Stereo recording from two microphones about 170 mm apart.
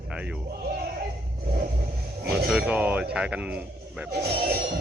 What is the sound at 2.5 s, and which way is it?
Speech, 5° right (ahead or behind).